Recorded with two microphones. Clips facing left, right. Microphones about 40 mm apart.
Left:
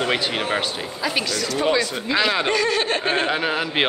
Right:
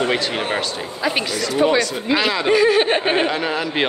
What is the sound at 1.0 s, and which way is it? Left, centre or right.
Speech, centre.